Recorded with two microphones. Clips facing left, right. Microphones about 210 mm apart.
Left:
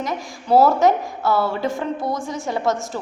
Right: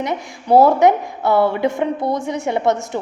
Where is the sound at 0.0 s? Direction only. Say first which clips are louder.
Right 3 dB; 20° right (ahead or behind).